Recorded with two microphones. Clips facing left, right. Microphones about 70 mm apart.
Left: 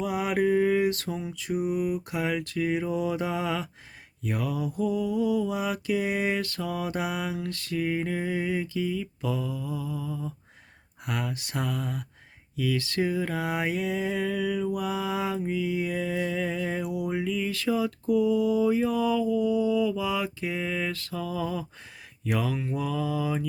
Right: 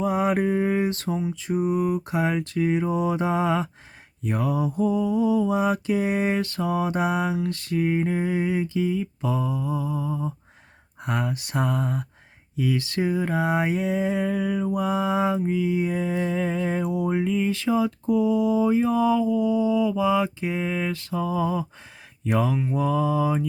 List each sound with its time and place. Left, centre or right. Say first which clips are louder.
0.0 s mantra: right 3 dB; right